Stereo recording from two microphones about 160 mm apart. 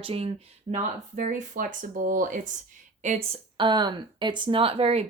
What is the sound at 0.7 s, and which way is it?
Speech, 55° right (ahead or behind).